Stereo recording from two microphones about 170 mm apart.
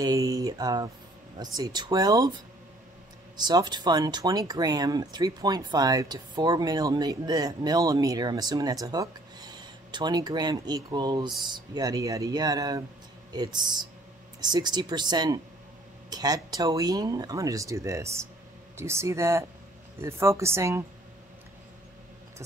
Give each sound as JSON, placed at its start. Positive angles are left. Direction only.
{"t": 0.0, "sound": "a woman's voice", "side_deg": -20}